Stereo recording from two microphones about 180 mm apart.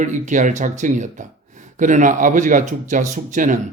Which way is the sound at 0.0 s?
45° right (ahead or behind).